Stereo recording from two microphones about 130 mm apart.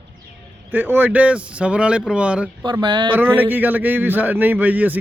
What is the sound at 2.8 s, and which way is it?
Speech, 35° right (ahead or behind).